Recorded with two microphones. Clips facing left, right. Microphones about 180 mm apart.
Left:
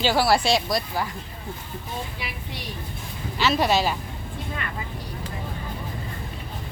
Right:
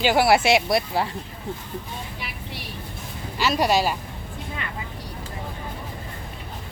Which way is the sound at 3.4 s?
10° right (ahead or behind).